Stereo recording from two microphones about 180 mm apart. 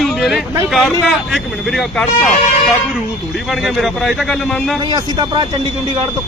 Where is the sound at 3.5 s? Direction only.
Centre (ahead or behind).